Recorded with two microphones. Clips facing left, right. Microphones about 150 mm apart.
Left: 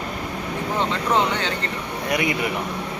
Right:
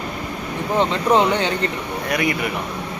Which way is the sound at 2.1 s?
20° left (ahead or behind).